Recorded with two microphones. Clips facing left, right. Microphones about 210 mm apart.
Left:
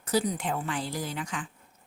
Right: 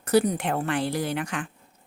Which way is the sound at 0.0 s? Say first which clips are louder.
Right 6 dB; 60° right (ahead or behind).